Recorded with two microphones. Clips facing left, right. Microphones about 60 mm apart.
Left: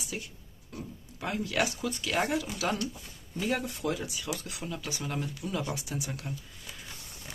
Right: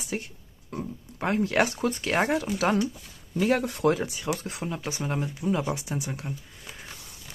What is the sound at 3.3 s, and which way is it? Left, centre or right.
Speech, right.